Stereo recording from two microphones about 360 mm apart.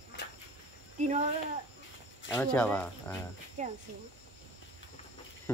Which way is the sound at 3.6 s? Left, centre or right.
Centre.